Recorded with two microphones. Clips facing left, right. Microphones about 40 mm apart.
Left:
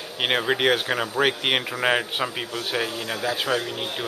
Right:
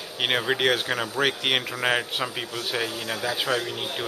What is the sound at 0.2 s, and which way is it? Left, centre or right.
A man's voice, centre.